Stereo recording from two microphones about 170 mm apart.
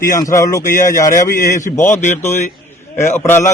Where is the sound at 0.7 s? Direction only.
50° left (ahead or behind).